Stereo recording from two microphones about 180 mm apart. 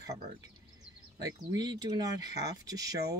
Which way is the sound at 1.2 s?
20° right (ahead or behind).